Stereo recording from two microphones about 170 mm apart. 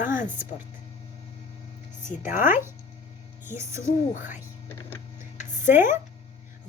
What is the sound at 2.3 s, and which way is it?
Speech, 15° right (ahead or behind).